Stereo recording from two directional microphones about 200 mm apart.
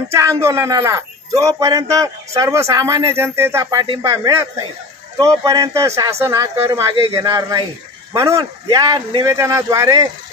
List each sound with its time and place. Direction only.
0.1 s speech: 15° right (ahead or behind)